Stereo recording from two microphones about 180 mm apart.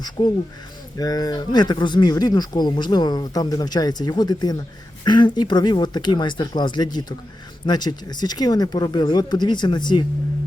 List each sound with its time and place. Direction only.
0.2 s speech: 25° left (ahead or behind)